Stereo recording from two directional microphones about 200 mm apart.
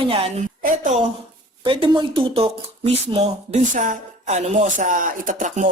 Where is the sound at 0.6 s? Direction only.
40° right (ahead or behind).